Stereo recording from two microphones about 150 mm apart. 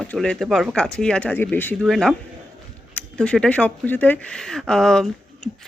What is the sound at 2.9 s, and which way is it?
Speech, 5° left (ahead or behind).